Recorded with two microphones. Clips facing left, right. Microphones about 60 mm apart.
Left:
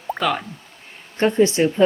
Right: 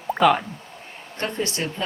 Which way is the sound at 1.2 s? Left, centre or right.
Left.